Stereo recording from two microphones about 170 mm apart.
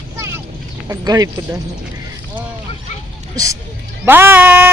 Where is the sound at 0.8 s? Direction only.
20° right (ahead or behind).